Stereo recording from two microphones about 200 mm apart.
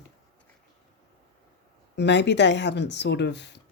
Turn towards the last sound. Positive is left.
turn(degrees=60)  # may be behind; listen again after turning